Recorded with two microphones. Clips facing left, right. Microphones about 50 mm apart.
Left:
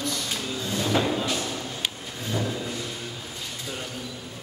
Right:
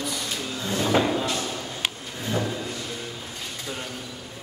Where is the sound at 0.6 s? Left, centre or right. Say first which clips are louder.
Right 3 dB; right.